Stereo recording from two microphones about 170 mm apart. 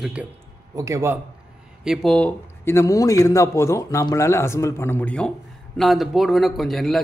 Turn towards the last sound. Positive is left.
turn(degrees=0)  # may be behind; listen again after turning